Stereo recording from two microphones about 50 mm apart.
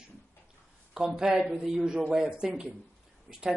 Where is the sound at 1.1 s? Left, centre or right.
Centre.